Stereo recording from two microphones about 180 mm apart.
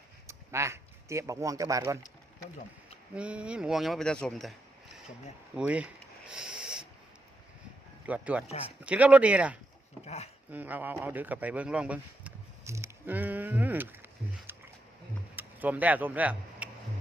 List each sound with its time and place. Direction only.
0.3 s speech: 15° right (ahead or behind)
3.2 s speech: 5° right (ahead or behind)
5.5 s a sound: 5° right (ahead or behind)
8.0 s speech: 10° right (ahead or behind)
10.5 s a sound: 10° right (ahead or behind)
15.4 s speech: 10° right (ahead or behind)